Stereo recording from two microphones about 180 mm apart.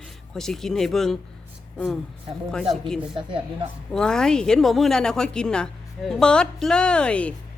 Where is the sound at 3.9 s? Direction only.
5° left (ahead or behind).